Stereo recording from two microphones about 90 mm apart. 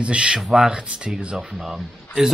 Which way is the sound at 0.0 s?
10° right (ahead or behind).